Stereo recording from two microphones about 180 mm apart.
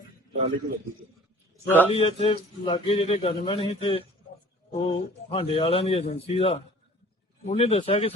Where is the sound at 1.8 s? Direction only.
30° left (ahead or behind).